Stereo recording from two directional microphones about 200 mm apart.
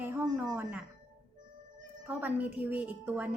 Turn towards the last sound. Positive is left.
turn(degrees=-10)  # may be behind; listen again after turning